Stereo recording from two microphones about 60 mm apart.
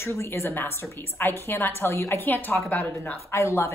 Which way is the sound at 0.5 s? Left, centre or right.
Left.